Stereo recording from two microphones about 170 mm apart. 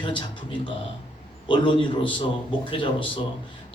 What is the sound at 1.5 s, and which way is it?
Speech, 30° left (ahead or behind).